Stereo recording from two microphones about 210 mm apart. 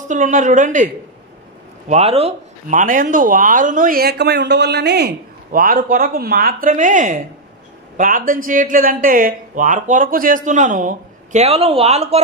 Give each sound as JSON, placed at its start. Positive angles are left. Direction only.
{"t": 0.1, "sound": "speech", "side_deg": -35}
{"t": 1.9, "sound": "speech", "side_deg": -30}